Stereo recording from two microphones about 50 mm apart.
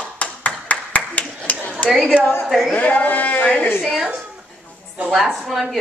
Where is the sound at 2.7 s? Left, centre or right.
Left.